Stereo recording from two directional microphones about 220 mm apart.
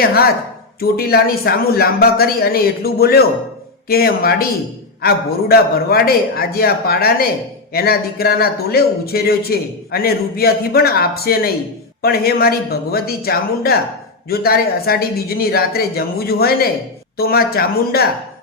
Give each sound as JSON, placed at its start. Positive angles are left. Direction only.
{"t": 0.0, "sound": "a man's voice", "side_deg": 45}